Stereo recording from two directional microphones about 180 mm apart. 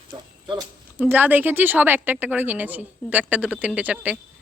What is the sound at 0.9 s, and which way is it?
A woman's voice, 10° right (ahead or behind).